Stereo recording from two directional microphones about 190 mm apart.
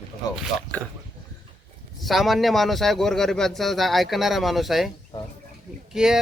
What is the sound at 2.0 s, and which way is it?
Speech, centre (ahead or behind).